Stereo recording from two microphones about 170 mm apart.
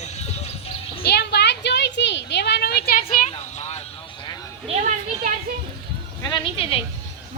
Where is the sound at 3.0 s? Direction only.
40° left (ahead or behind).